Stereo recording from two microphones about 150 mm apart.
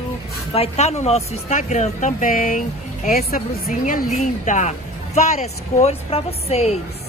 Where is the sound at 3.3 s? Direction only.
70° left (ahead or behind); by 6.7 s 45° left (ahead or behind).